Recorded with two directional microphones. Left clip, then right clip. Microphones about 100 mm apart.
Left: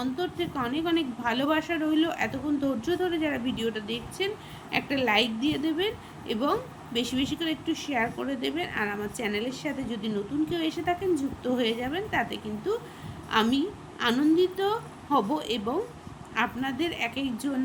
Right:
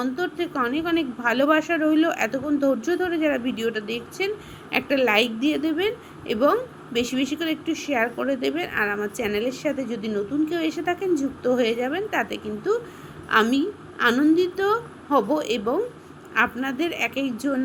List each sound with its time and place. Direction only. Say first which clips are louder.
0.0 s a woman's voice: right 4 dB; 25° right (ahead or behind)